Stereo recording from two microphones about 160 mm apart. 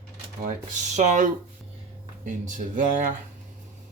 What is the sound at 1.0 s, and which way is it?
Speech, 50° right (ahead or behind).